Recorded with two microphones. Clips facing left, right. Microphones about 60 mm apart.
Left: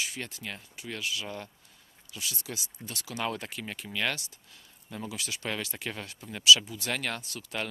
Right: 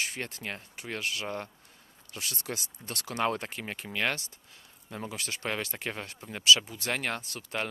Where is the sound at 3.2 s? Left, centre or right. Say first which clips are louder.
Right 3 dB; right.